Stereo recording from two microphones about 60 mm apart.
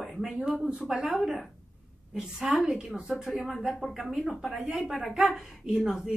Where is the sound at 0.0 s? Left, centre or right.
Centre.